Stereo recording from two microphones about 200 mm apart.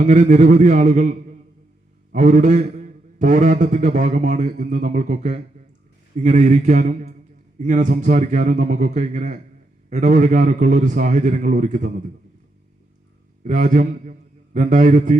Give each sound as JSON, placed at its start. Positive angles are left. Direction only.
{"t": 0.0, "sound": "a man's voice", "side_deg": -40}
{"t": 2.1, "sound": "a man's voice", "side_deg": -35}
{"t": 13.4, "sound": "a man's voice", "side_deg": -40}